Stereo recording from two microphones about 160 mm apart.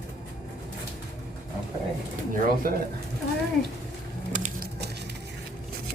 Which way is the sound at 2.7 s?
65° right (ahead or behind).